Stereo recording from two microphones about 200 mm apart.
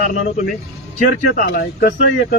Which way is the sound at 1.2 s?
45° left (ahead or behind).